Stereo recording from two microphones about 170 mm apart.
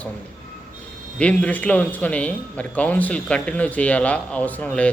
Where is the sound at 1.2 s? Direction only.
10° left (ahead or behind).